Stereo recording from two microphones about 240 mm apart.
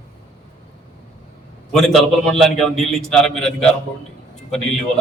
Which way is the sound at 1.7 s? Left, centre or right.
Centre.